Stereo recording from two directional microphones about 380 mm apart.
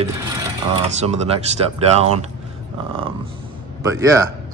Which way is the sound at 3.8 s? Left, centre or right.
Centre.